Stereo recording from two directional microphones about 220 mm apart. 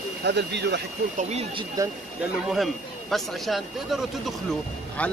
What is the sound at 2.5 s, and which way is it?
A man's voice, centre (ahead or behind).